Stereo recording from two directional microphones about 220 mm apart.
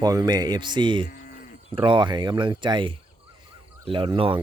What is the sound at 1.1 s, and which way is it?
Livestock, 40° left (ahead or behind).